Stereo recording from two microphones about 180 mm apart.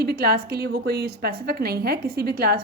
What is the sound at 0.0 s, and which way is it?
A woman's voice, 60° right (ahead or behind).